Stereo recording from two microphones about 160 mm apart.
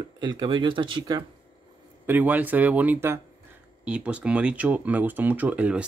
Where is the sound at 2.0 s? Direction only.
10° right (ahead or behind).